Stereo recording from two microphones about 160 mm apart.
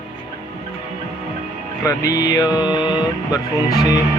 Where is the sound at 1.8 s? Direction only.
20° left (ahead or behind).